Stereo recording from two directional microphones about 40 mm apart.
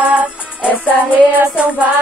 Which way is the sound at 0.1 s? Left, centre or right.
Right.